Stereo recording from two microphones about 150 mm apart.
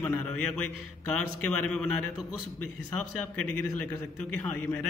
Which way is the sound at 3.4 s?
10° left (ahead or behind).